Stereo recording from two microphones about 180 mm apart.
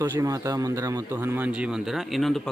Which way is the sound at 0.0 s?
20° right (ahead or behind).